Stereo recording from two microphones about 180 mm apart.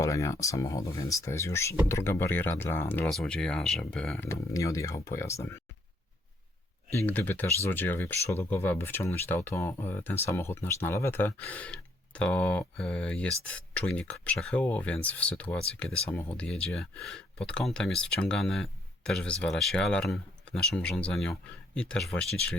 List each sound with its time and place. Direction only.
0.0 s speech: 15° left (ahead or behind)
4.3 s speech: 15° left (ahead or behind)
6.9 s speech: 10° left (ahead or behind)